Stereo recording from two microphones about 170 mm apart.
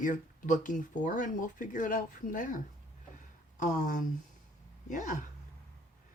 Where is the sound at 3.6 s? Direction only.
50° left (ahead or behind).